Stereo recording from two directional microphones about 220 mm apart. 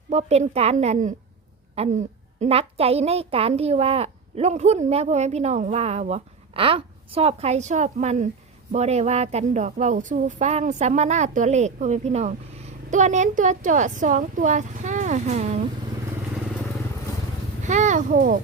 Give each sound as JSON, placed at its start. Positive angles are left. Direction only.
{"t": 0.1, "sound": "a woman's voice", "side_deg": -30}
{"t": 17.6, "sound": "a child's voice", "side_deg": -35}